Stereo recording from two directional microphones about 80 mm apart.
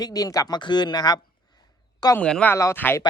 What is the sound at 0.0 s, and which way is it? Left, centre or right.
Speech, left.